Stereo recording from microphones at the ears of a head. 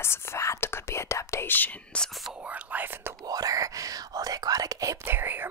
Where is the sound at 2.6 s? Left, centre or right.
Right.